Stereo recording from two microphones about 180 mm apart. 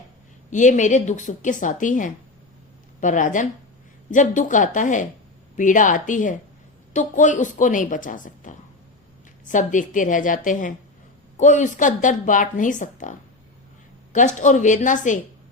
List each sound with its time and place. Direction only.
0.5 s speech: 45° left (ahead or behind)